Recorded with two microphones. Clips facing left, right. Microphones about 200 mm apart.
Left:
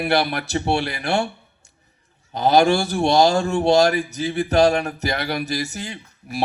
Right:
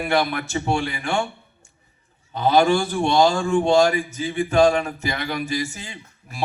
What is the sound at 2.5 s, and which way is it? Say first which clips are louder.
Speech: left 1 dB; 40° left (ahead or behind).